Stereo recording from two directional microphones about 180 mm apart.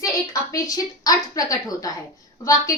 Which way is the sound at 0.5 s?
20° left (ahead or behind).